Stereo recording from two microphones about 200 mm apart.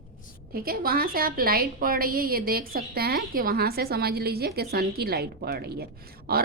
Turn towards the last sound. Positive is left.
turn(degrees=-50)  # may be behind; listen again after turning